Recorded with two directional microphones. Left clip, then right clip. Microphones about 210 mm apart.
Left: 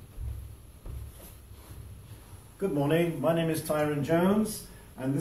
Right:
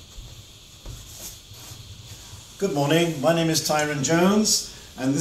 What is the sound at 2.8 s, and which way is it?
Speech, 15° right (ahead or behind).